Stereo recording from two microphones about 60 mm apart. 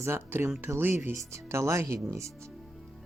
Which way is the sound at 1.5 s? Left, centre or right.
Right.